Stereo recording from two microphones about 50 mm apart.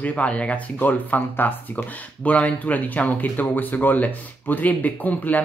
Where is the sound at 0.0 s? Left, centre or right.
Left.